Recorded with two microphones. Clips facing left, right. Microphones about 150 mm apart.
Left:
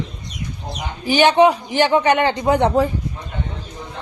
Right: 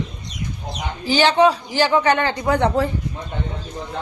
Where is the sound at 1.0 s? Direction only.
15° left (ahead or behind).